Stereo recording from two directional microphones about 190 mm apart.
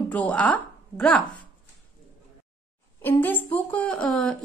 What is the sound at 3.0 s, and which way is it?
A woman's voice, 10° left (ahead or behind).